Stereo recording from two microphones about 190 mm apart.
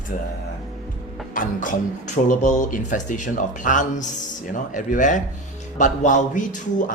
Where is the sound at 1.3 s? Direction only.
45° left (ahead or behind).